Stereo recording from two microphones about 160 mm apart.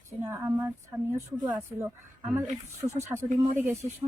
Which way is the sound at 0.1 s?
15° right (ahead or behind).